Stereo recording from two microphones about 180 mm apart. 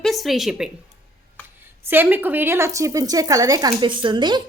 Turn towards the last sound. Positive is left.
turn(degrees=-25)  # may be behind; listen again after turning